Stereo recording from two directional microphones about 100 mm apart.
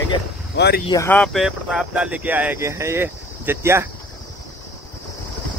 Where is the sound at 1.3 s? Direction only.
5° right (ahead or behind).